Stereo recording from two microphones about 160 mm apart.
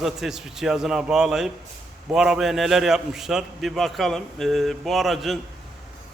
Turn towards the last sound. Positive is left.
turn(degrees=0)  # may be behind; listen again after turning